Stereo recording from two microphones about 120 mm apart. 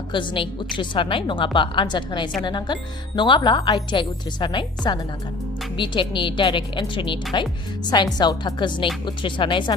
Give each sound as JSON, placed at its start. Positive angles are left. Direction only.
{"t": 0.1, "sound": "a woman's voice", "side_deg": 40}